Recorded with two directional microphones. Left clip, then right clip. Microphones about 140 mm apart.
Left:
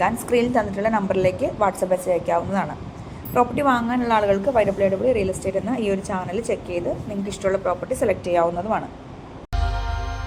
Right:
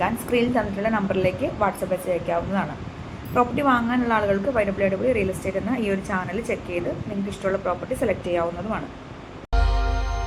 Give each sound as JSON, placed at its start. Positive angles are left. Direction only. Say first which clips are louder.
{"t": 0.0, "sound": "a woman's voice", "louder": "left 3 dB", "side_deg": 40}